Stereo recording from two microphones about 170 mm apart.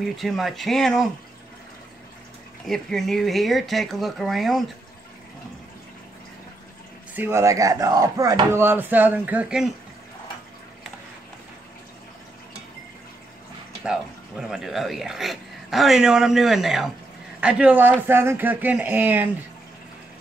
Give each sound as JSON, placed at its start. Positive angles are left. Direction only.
{"t": 0.0, "sound": "speech", "side_deg": 0}
{"t": 2.6, "sound": "speech", "side_deg": 0}
{"t": 7.2, "sound": "speech", "side_deg": -15}
{"t": 13.8, "sound": "speech", "side_deg": -5}